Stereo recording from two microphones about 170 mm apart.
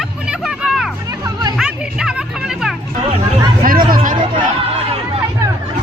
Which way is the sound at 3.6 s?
55° right (ahead or behind).